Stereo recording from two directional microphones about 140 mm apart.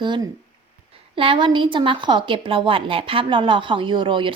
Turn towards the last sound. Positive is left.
turn(degrees=-35)  # may be behind; listen again after turning